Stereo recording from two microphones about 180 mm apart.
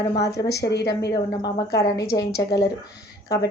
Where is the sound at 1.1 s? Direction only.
20° left (ahead or behind).